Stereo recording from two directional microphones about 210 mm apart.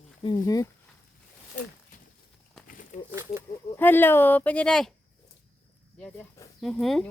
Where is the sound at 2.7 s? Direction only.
40° left (ahead or behind).